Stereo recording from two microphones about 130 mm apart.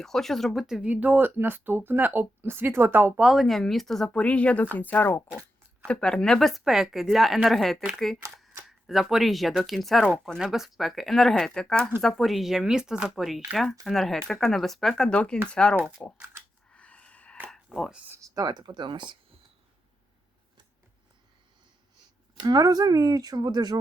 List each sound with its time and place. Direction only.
0.0 s speech: 5° left (ahead or behind); by 3.2 s 15° right (ahead or behind)
3.2 s speech: centre (ahead or behind)
16.4 s scissors: 20° right (ahead or behind)
16.7 s a sound: 10° left (ahead or behind)
18.2 s speech: 30° right (ahead or behind)
22.4 s speech: 30° right (ahead or behind)